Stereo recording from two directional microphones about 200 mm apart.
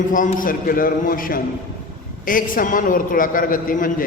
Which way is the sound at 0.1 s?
40° left (ahead or behind).